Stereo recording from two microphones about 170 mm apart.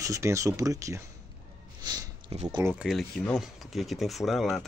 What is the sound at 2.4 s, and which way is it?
Speech, 15° right (ahead or behind).